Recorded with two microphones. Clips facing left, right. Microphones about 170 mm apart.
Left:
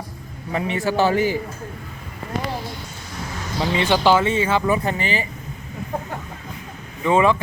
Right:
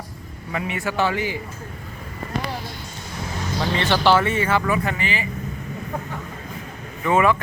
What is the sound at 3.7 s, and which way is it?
Speech, 15° left (ahead or behind).